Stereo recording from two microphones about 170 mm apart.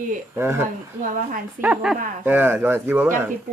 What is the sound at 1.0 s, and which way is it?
Speech, 55° right (ahead or behind).